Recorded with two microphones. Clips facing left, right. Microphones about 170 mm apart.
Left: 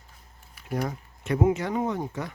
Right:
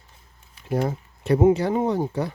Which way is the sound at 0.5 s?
30° right (ahead or behind).